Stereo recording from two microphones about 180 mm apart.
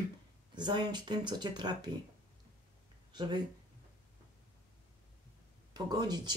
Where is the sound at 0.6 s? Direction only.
25° right (ahead or behind).